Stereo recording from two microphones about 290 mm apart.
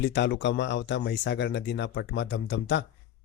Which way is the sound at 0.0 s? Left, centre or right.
Left.